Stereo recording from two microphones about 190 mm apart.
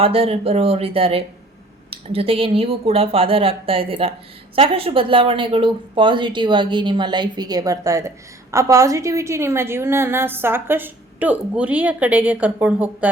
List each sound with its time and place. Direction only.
0.0 s a woman's voice: 30° right (ahead or behind); by 13.1 s 10° right (ahead or behind)